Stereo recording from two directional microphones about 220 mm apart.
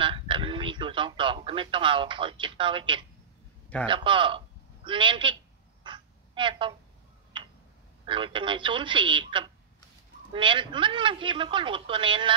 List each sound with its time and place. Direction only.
0.0 s radio: 20° right (ahead or behind)
3.8 s a man's voice: 20° right (ahead or behind)
5.9 s a sound: 20° right (ahead or behind)
7.3 s tick-tock: 20° right (ahead or behind)
8.0 s a man's voice: 25° right (ahead or behind)